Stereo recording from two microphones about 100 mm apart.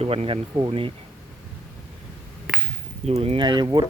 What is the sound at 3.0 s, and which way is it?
Speech, 90° right.